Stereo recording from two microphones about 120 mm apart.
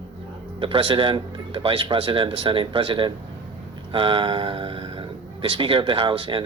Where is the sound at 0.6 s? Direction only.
45° right (ahead or behind).